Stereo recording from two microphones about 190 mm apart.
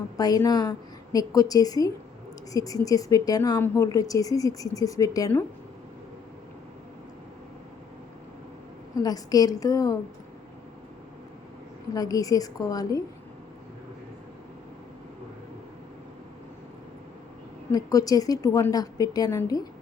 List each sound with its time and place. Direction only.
0.2 s a woman's voice: 20° left (ahead or behind)
9.0 s a woman's voice: 20° left (ahead or behind)
11.9 s a woman's voice: 20° left (ahead or behind)
17.7 s a woman's voice: 20° left (ahead or behind)